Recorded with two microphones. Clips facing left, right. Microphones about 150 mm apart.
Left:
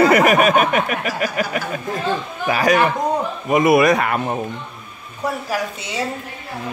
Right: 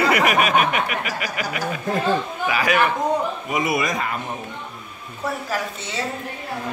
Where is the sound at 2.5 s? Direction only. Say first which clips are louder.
Left 4 dB; 40° left (ahead or behind).